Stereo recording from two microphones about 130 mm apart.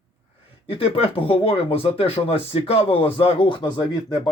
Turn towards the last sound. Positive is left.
turn(degrees=35)  # may be behind; listen again after turning